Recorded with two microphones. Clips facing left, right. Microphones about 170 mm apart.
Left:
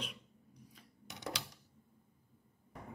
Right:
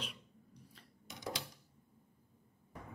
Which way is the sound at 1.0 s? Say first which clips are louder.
Even; 70° left (ahead or behind).